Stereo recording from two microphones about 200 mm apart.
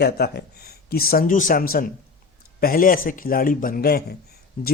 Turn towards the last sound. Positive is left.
turn(degrees=45)  # may be behind; listen again after turning